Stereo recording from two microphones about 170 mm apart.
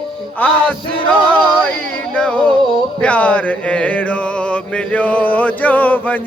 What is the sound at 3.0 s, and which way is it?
Mantra, 10° left (ahead or behind).